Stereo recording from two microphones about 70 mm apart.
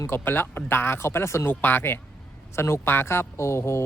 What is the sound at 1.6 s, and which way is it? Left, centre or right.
Speech, left.